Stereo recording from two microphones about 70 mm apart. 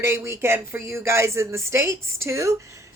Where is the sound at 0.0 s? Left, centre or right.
Right.